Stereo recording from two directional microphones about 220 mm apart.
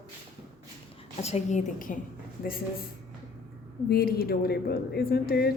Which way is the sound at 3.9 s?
45° left (ahead or behind).